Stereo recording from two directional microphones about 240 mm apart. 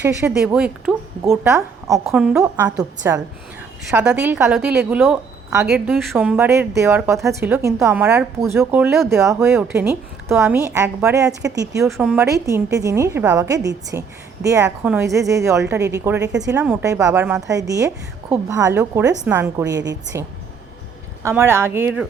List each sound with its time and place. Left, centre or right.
0.2 s a woman's voice: centre
2.4 s a woman's voice: centre
11.8 s a woman's voice: centre